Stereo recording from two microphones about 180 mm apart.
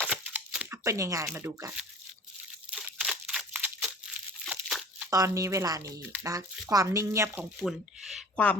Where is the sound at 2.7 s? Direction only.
5° right (ahead or behind).